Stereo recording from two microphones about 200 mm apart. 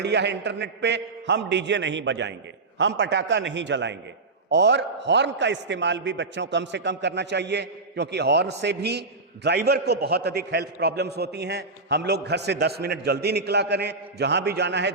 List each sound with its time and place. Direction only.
0.0 s a man's voice: 60° right (ahead or behind)